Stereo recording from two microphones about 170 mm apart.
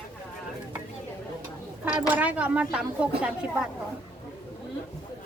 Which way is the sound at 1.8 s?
10° right (ahead or behind).